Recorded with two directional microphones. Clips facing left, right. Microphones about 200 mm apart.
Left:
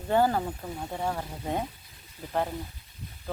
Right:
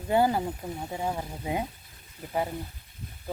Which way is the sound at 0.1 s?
10° right (ahead or behind).